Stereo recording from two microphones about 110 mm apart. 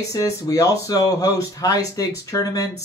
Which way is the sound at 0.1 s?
30° left (ahead or behind).